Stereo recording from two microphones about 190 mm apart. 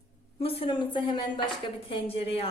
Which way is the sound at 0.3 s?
30° left (ahead or behind).